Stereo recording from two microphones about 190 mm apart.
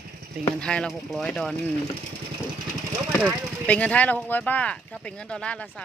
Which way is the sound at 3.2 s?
5° left (ahead or behind).